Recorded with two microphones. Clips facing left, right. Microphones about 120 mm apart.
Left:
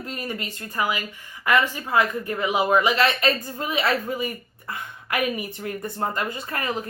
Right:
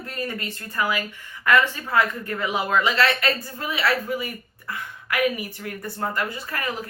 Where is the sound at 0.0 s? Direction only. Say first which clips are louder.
Right 1 dB; 20° left (ahead or behind).